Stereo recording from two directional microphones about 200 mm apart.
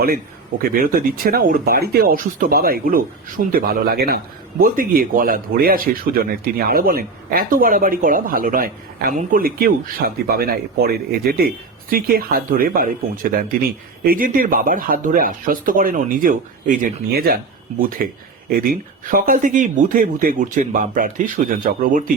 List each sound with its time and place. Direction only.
0.6 s speech: 45° right (ahead or behind)